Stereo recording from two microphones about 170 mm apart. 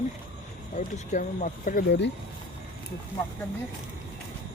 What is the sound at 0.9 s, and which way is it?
Speech, 50° left (ahead or behind).